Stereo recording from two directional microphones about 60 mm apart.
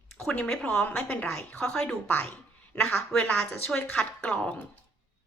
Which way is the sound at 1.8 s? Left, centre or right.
Left.